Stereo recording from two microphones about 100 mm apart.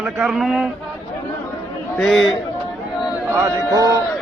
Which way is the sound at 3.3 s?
35° right (ahead or behind).